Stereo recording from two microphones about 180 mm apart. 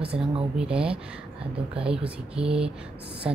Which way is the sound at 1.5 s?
30° right (ahead or behind).